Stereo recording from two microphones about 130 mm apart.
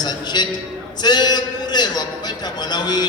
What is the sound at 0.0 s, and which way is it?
A man's voice, 35° left (ahead or behind).